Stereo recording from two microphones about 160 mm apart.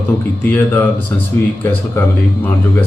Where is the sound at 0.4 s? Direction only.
10° left (ahead or behind).